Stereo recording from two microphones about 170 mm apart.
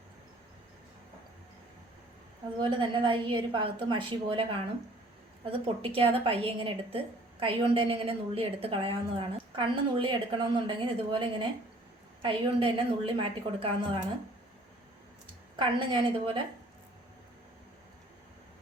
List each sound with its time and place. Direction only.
2.6 s a woman's voice: 30° right (ahead or behind)
5.5 s a woman's voice: 35° right (ahead or behind)
15.5 s a woman's voice: 30° right (ahead or behind)